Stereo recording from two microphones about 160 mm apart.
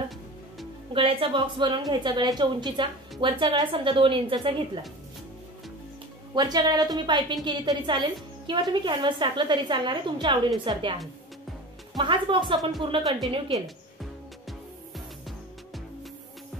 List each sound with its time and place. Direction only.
0.9 s speech: 35° right (ahead or behind)
6.3 s a woman's voice: 25° right (ahead or behind)
12.0 s speech: 30° right (ahead or behind)